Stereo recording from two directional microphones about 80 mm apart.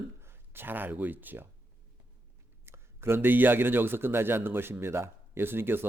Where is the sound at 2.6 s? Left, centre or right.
Right.